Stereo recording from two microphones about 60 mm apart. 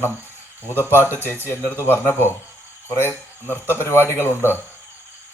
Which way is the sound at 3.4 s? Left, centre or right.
Left.